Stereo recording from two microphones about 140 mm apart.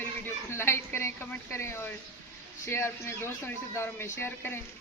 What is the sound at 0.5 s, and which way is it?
Speech, 20° left (ahead or behind).